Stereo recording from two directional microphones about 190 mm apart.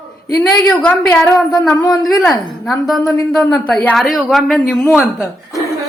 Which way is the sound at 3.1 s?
15° left (ahead or behind).